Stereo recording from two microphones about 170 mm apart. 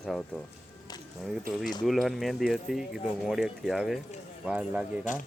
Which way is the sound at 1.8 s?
Centre (ahead or behind).